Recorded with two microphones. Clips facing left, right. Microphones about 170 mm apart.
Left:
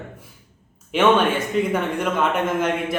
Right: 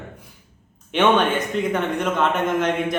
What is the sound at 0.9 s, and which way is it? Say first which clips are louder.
A man's voice: left 1 dB; 5° left (ahead or behind).